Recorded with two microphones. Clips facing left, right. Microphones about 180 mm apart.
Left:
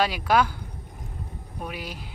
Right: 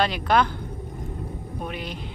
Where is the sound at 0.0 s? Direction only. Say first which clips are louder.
Right 1 dB; 10° left (ahead or behind).